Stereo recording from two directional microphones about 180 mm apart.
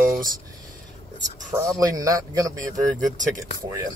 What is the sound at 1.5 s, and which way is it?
Speech, 20° right (ahead or behind).